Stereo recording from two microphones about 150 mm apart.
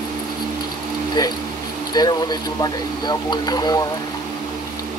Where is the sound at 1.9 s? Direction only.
25° left (ahead or behind).